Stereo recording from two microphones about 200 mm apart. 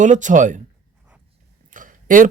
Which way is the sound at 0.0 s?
40° right (ahead or behind).